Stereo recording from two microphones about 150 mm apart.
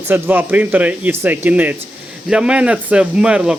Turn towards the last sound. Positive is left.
turn(degrees=-5)  # may be behind; listen again after turning